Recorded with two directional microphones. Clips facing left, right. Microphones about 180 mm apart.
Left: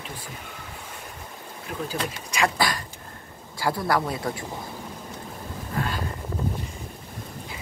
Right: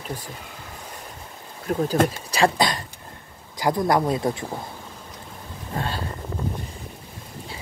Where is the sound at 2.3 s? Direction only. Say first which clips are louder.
Right 2 dB; 30° right (ahead or behind).